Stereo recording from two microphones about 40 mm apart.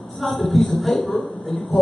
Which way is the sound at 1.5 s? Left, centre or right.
Centre.